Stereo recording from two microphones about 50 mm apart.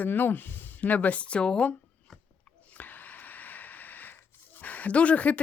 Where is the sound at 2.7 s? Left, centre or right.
Left.